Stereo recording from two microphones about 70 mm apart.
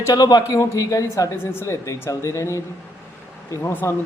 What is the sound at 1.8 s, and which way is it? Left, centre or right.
Speech, left.